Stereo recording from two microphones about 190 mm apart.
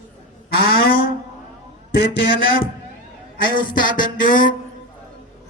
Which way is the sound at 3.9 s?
45° left (ahead or behind).